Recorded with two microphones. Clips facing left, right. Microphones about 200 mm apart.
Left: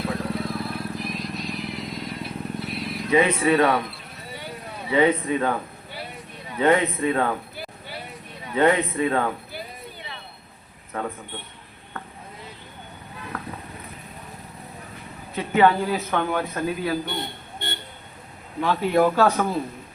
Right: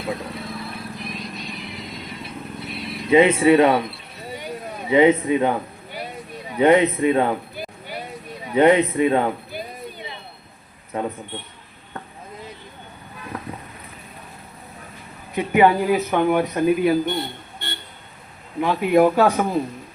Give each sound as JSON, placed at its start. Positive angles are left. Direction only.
{"t": 0.0, "sound": "vehicle", "side_deg": 0}
{"t": 3.1, "sound": "a man's voice", "side_deg": -25}
{"t": 4.4, "sound": "a sound", "side_deg": -15}
{"t": 8.5, "sound": "a man's voice", "side_deg": -20}
{"t": 10.9, "sound": "a man's voice", "side_deg": -20}
{"t": 15.4, "sound": "speech", "side_deg": -15}
{"t": 18.6, "sound": "speech", "side_deg": -15}